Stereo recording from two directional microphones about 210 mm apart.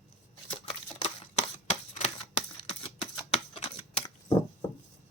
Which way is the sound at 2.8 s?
25° left (ahead or behind).